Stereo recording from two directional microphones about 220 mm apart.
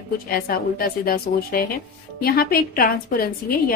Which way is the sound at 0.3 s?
40° left (ahead or behind).